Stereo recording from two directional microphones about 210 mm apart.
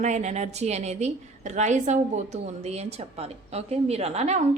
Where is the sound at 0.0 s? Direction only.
35° right (ahead or behind).